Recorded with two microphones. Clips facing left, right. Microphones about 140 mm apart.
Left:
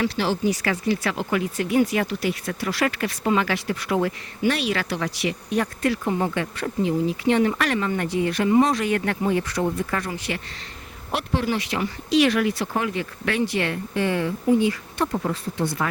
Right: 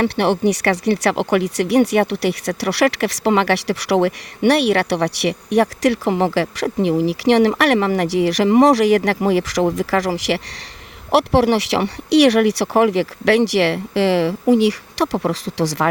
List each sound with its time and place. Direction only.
0.0 s speech: 65° right (ahead or behind); by 15.9 s 90° right